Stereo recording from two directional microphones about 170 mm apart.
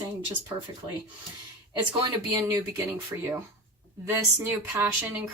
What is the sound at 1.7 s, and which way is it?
Speech, 25° right (ahead or behind).